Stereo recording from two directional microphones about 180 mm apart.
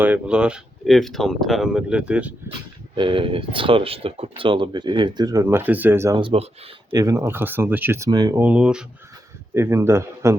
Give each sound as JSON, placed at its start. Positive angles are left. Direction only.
{"t": 0.0, "sound": "speech", "side_deg": -5}
{"t": 2.5, "sound": "speech", "side_deg": -25}
{"t": 6.1, "sound": "speech", "side_deg": -30}
{"t": 6.9, "sound": "speech", "side_deg": -20}
{"t": 8.4, "sound": "speech", "side_deg": -5}